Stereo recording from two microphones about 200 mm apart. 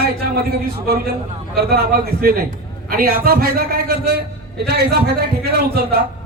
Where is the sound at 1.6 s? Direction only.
50° right (ahead or behind).